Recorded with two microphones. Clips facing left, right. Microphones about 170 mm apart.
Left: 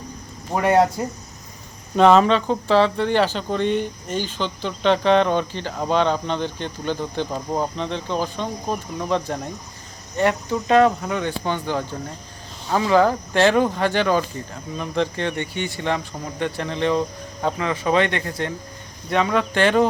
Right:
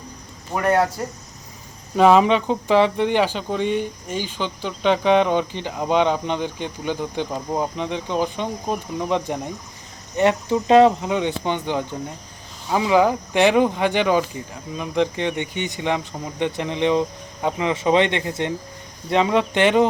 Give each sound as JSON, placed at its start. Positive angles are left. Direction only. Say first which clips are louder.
{"t": 0.5, "sound": "speech", "louder": "left 2 dB", "side_deg": 30}
{"t": 2.0, "sound": "speech", "louder": "even", "side_deg": -10}
{"t": 8.6, "sound": "speech", "louder": "right 1 dB", "side_deg": 0}
{"t": 9.0, "sound": "speech", "louder": "even", "side_deg": -15}